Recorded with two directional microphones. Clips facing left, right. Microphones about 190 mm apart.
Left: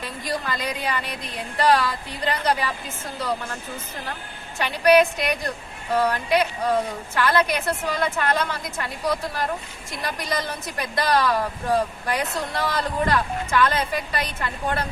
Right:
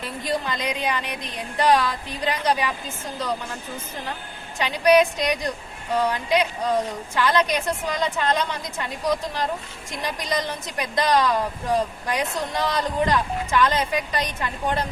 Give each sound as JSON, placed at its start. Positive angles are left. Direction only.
{"t": 0.3, "sound": "speech", "side_deg": -20}
{"t": 4.5, "sound": "speech", "side_deg": -15}